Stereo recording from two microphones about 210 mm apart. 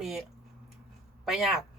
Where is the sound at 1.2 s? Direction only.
Centre (ahead or behind).